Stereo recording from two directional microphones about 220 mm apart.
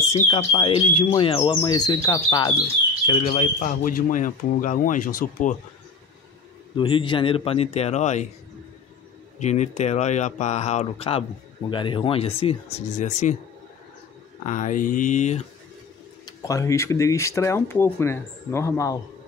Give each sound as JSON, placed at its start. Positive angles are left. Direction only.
{"t": 0.0, "sound": "speech", "side_deg": 30}
{"t": 3.1, "sound": "speech", "side_deg": 30}
{"t": 6.8, "sound": "speech", "side_deg": 25}
{"t": 9.4, "sound": "speech", "side_deg": 30}
{"t": 14.4, "sound": "speech", "side_deg": 35}
{"t": 16.3, "sound": "speech", "side_deg": 15}